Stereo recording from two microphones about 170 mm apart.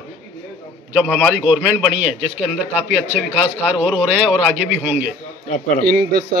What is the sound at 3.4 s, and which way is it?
A man's voice, 10° right (ahead or behind).